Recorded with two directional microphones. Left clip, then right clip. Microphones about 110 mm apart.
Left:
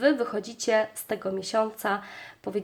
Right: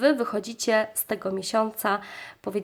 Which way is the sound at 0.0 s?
40° right (ahead or behind).